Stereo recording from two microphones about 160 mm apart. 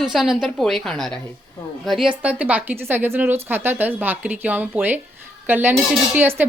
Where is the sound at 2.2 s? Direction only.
10° right (ahead or behind).